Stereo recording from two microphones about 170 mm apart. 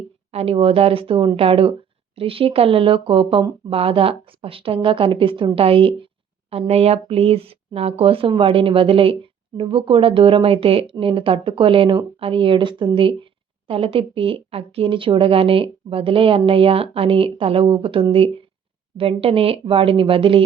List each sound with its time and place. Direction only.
0.3 s a woman's voice: 35° right (ahead or behind)